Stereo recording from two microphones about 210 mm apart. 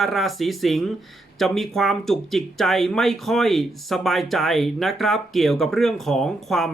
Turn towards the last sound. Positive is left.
turn(degrees=0)  # may be behind; listen again after turning